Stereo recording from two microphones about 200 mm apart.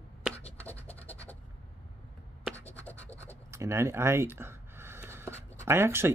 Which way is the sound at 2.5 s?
10° left (ahead or behind).